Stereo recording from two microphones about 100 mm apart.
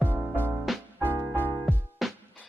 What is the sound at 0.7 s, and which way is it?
Music, centre (ahead or behind).